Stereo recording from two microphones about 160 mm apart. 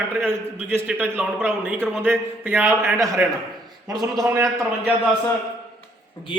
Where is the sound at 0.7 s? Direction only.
10° right (ahead or behind).